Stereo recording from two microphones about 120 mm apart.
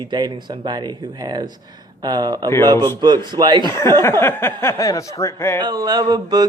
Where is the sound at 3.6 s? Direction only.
25° left (ahead or behind).